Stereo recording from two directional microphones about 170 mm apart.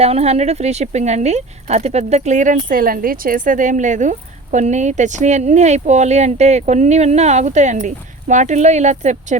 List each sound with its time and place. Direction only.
0.0 s speech: 35° right (ahead or behind)